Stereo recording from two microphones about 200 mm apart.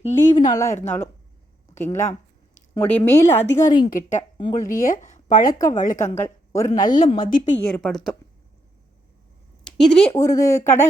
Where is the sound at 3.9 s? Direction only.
40° left (ahead or behind).